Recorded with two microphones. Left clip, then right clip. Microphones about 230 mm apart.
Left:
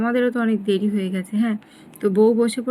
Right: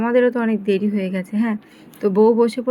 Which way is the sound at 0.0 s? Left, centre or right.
Centre.